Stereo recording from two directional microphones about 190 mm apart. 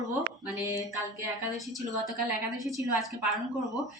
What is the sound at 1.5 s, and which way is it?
Speech, centre (ahead or behind).